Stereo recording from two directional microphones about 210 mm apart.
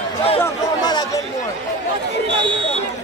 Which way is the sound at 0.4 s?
15° left (ahead or behind).